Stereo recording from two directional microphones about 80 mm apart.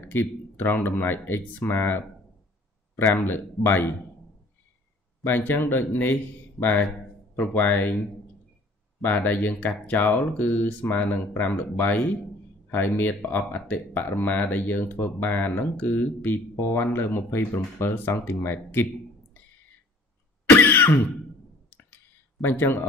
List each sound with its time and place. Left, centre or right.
0.0 s speech: left
3.2 s speech: left
5.2 s speech: left
9.0 s speech: left
20.4 s throat clearing: left
21.6 s clicking: left